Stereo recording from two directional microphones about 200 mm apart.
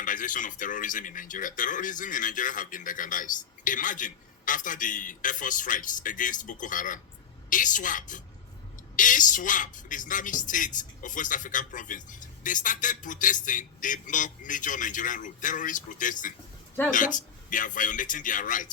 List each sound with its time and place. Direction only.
0.0 s a man's voice: 40° left (ahead or behind)